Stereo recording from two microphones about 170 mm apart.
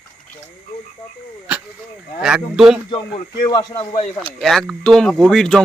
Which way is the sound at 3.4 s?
25° left (ahead or behind).